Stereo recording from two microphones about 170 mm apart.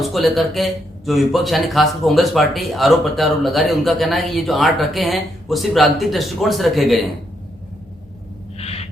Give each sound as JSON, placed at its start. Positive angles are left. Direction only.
{"t": 0.0, "sound": "a man's voice", "side_deg": 0}
{"t": 8.5, "sound": "owl", "side_deg": 35}